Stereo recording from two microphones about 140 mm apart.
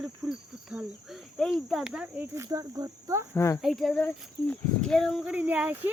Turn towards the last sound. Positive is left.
turn(degrees=-10)  # may be behind; listen again after turning